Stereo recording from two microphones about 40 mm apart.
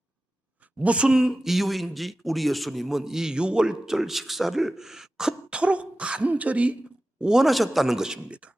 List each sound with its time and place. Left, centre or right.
0.8 s speech: right
1.0 s speech: centre
5.5 s speech: right
7.2 s speech: centre
7.4 s speech: centre
7.9 s speech: centre
8.3 s speech: right